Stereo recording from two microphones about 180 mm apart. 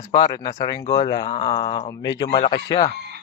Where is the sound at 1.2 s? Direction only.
35° left (ahead or behind).